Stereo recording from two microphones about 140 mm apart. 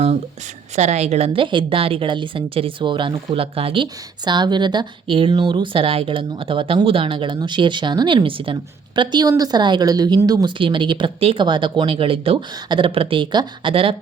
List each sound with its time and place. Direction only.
0.8 s speech: 55° right (ahead or behind)
4.3 s a woman's voice: 30° right (ahead or behind)